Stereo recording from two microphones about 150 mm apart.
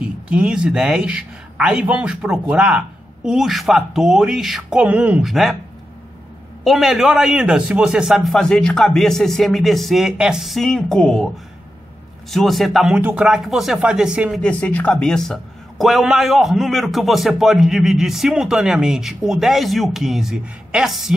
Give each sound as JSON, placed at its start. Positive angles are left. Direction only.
{"t": 0.0, "sound": "a man's voice", "side_deg": -5}
{"t": 6.6, "sound": "a man's voice", "side_deg": 0}
{"t": 12.3, "sound": "a man's voice", "side_deg": 0}
{"t": 14.4, "sound": "a man's voice", "side_deg": 10}